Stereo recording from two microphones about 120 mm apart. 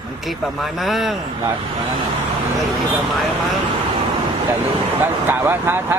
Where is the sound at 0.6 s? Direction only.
Centre (ahead or behind).